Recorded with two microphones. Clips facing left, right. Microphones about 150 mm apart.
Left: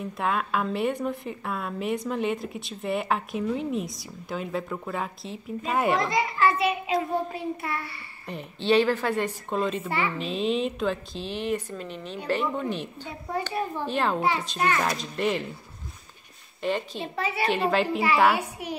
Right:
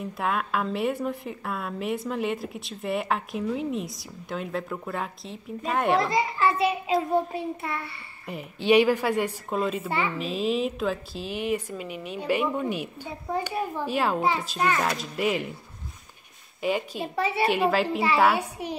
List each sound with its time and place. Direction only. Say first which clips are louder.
0.0 s a woman's voice: even; centre (ahead or behind)
6.0 s a child's voice: even; 30° right (ahead or behind)
8.3 s a woman's voice: right 2 dB; 10° right (ahead or behind)
9.8 s a child's voice: even; 25° right (ahead or behind)
10.1 s a woman's voice: even; 5° right (ahead or behind)
16.6 s a woman's voice: right 1 dB; 10° right (ahead or behind)
18.6 s a child's voice: right 1 dB; 30° right (ahead or behind)